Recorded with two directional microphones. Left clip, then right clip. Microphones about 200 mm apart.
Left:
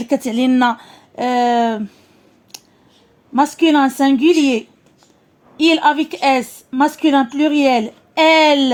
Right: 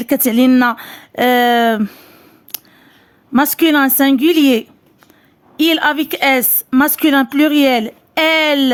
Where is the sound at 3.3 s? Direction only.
35° right (ahead or behind).